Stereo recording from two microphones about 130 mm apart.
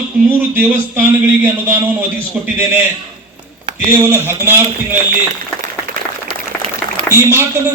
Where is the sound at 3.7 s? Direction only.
20° right (ahead or behind).